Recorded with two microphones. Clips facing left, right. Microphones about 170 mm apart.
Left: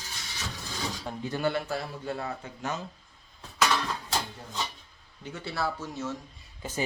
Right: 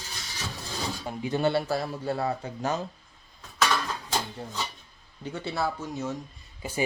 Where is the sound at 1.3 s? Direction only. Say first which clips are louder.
Right 4 dB; 25° right (ahead or behind).